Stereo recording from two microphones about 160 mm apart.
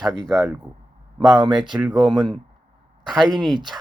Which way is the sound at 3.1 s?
Centre (ahead or behind).